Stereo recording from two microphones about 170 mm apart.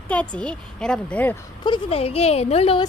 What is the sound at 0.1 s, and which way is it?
A woman's voice, 5° left (ahead or behind).